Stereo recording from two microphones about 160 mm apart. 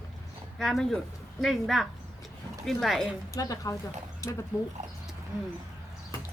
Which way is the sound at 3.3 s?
20° left (ahead or behind).